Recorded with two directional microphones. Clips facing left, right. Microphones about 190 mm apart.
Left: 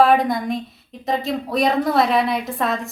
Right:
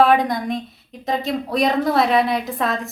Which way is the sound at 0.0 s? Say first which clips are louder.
Even; centre (ahead or behind).